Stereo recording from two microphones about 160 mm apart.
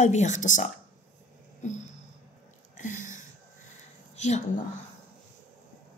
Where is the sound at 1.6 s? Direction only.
50° left (ahead or behind).